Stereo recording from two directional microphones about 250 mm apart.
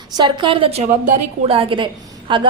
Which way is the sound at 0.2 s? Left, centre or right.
Centre.